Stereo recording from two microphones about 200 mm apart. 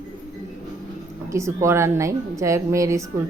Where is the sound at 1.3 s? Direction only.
15° right (ahead or behind).